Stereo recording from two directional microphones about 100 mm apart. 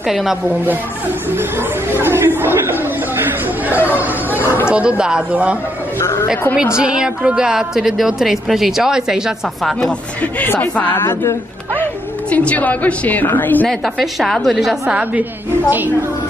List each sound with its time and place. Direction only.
0.1 s a woman's voice: 5° right (ahead or behind)
1.9 s speech: 20° right (ahead or behind)
5.9 s a man's voice: 25° left (ahead or behind)
6.8 s a woman's voice: 10° right (ahead or behind)
10.4 s a woman's voice: 20° left (ahead or behind)
13.7 s a woman's voice: 5° left (ahead or behind)